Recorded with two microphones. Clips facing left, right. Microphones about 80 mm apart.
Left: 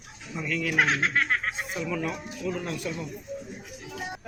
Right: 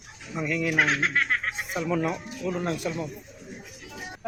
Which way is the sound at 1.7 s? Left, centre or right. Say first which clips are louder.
Right 6 dB; right.